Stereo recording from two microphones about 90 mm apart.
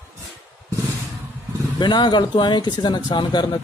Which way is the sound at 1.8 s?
55° left (ahead or behind).